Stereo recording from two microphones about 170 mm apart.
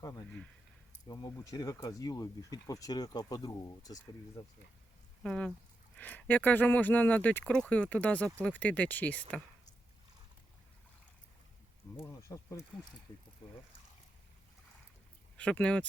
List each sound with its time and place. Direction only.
0.0 s speech: 20° left (ahead or behind)
5.2 s speech: 5° left (ahead or behind)
11.9 s speech: 20° left (ahead or behind)
15.4 s speech: 5° left (ahead or behind)